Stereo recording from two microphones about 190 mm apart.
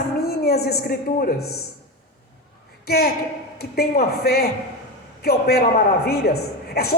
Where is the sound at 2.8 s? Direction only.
55° left (ahead or behind).